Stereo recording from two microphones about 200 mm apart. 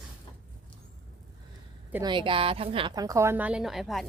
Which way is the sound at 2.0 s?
25° right (ahead or behind).